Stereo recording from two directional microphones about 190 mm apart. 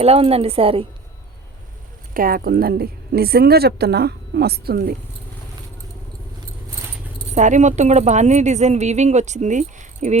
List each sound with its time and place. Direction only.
0.0 s speech: 30° right (ahead or behind)
2.1 s a woman's voice: 50° right (ahead or behind)
7.3 s speech: 40° right (ahead or behind)